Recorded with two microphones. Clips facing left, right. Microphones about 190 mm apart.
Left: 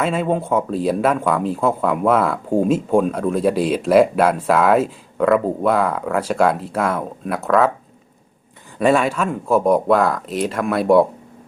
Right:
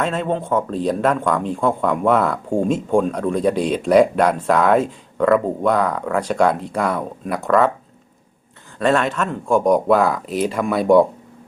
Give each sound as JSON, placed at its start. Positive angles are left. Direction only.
{"t": 0.0, "sound": "speech", "side_deg": 10}
{"t": 8.8, "sound": "speech", "side_deg": 10}